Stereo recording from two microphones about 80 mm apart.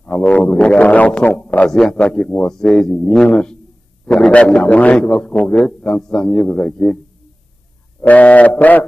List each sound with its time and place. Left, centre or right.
0.0 s a man's voice: centre
8.0 s speech: centre